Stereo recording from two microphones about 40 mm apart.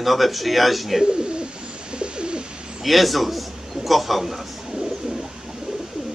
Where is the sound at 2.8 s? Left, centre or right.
Centre.